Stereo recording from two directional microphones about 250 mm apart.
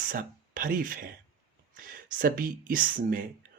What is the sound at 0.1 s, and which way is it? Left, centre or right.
Speech, right.